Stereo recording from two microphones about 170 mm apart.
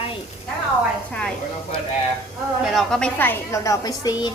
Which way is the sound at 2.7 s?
5° left (ahead or behind).